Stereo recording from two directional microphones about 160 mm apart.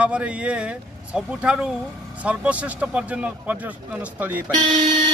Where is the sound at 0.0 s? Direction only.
5° right (ahead or behind).